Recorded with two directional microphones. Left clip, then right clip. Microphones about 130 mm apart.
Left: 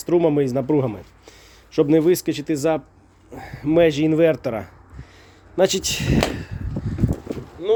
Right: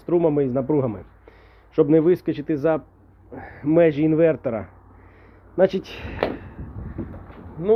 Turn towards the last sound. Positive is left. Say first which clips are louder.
# right 1 dB
turn(degrees=40)  # may be behind; listen again after turning